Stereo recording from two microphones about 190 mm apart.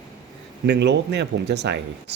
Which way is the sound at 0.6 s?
60° right (ahead or behind).